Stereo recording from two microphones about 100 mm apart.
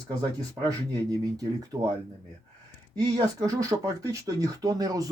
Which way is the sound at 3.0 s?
40° right (ahead or behind).